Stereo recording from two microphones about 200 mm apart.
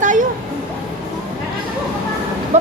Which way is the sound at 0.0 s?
40° right (ahead or behind).